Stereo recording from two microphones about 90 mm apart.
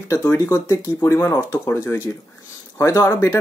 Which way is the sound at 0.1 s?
30° left (ahead or behind).